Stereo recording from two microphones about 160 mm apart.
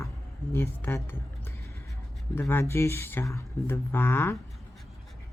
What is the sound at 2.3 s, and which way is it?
Speech, 15° left (ahead or behind).